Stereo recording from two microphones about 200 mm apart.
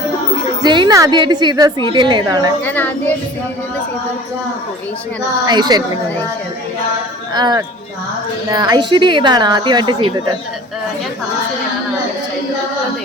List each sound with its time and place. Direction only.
0.6 s a woman's voice: 20° right (ahead or behind)
2.6 s a child's voice: 10° left (ahead or behind)
5.5 s a woman's voice: 20° right (ahead or behind)
7.3 s a woman's voice: 20° right (ahead or behind)